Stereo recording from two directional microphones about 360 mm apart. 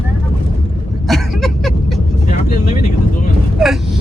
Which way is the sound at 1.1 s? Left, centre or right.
Centre.